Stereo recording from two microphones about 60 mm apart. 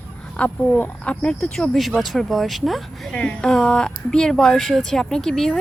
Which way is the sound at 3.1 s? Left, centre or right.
Centre.